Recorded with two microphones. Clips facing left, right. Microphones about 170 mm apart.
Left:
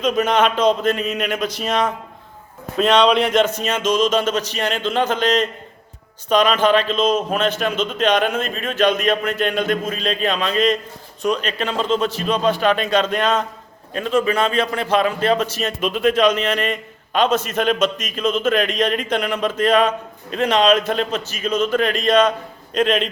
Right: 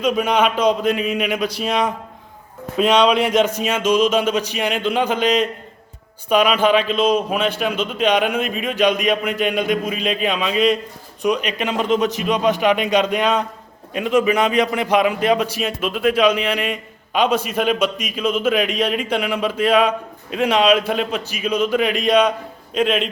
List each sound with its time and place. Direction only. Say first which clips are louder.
0.0 s a man's voice: even; 10° right (ahead or behind)